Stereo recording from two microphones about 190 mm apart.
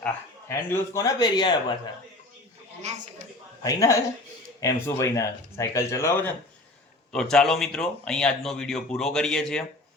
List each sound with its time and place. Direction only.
0.0 s speech: 10° left (ahead or behind)
2.8 s speech: 35° right (ahead or behind)
3.6 s speech: 15° left (ahead or behind)
7.1 s speech: 5° left (ahead or behind)